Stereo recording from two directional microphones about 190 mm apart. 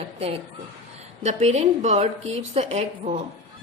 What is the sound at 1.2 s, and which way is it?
A woman's voice, 35° right (ahead or behind).